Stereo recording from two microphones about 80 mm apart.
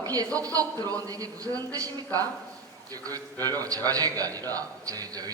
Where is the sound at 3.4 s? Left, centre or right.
Right.